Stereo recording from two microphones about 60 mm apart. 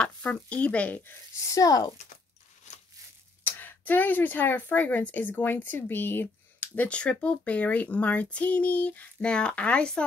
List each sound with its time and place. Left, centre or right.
0.0 s a woman's voice: left
1.3 s speech: left
3.4 s a woman's voice: left; by 10.0 s centre